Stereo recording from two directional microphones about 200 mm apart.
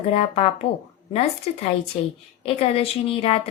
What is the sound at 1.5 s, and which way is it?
A woman's voice, 30° left (ahead or behind).